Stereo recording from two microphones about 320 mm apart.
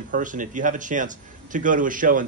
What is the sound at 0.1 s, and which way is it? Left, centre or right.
A man's voice, right.